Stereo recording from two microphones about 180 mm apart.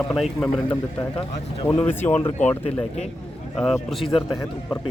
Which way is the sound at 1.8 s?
10° left (ahead or behind).